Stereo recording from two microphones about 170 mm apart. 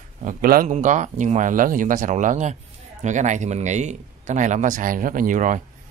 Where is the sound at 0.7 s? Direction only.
45° right (ahead or behind).